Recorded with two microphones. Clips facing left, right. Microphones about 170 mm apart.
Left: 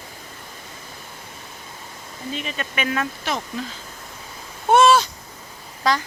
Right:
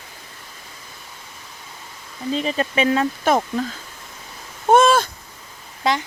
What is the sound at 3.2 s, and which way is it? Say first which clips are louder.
Speech: right 8 dB; 50° right (ahead or behind).